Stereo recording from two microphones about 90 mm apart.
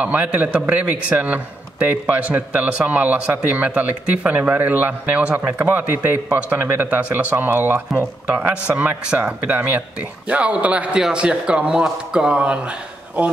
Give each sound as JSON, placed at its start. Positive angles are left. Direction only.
{"t": 0.0, "sound": "speech", "side_deg": -15}